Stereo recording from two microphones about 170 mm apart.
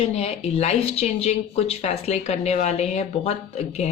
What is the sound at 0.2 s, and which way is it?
Speech, 40° left (ahead or behind).